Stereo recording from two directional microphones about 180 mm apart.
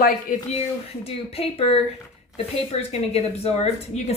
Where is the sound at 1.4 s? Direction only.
35° left (ahead or behind).